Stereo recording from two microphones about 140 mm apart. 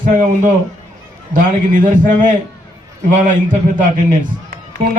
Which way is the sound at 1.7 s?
70° right (ahead or behind).